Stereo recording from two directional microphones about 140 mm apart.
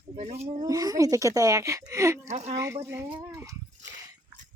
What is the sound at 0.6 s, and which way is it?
A woman's voice, 25° right (ahead or behind).